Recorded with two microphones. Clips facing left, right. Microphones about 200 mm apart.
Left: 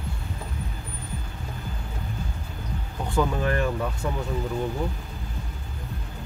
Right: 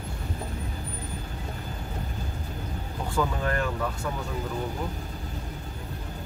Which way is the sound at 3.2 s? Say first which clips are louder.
Left 3 dB; 20° left (ahead or behind).